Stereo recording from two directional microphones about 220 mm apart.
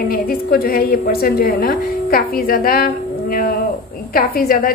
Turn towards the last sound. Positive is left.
turn(degrees=40)  # may be behind; listen again after turning